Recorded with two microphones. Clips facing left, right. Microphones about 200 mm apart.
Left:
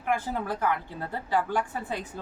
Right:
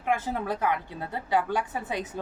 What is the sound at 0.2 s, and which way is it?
A woman's voice, 20° right (ahead or behind).